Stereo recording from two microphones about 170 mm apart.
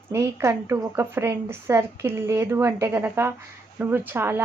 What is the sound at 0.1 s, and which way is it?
A woman's voice, 15° right (ahead or behind).